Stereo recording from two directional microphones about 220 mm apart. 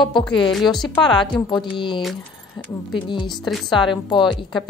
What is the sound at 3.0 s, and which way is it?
Speech, 20° left (ahead or behind).